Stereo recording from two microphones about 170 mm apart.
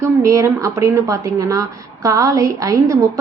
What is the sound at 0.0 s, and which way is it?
A woman's voice, 20° right (ahead or behind).